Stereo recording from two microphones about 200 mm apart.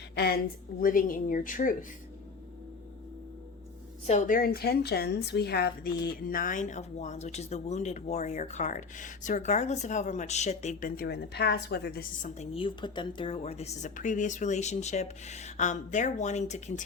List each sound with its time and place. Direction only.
0.8 s speech: 45° left (ahead or behind)
4.0 s a woman's voice: 40° left (ahead or behind)
12.3 s a woman's voice: 30° left (ahead or behind)